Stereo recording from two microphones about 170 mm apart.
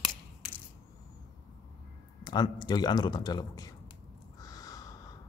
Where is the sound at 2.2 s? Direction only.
25° left (ahead or behind).